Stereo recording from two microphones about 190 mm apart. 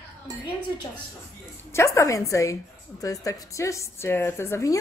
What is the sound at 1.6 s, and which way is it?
A woman's voice, 15° left (ahead or behind).